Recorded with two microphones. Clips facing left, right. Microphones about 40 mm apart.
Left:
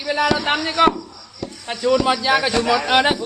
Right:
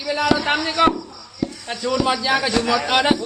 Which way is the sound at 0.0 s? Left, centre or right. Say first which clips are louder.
Left 2 dB; left.